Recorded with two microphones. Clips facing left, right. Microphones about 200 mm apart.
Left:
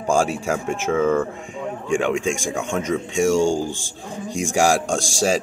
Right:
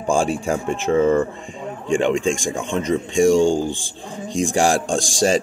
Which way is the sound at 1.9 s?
10° left (ahead or behind).